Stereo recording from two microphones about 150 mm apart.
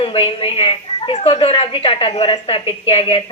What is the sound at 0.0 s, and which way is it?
A woman's voice, 35° left (ahead or behind).